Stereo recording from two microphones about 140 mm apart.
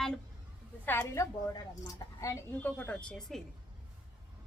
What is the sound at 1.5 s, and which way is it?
Speech, 25° left (ahead or behind).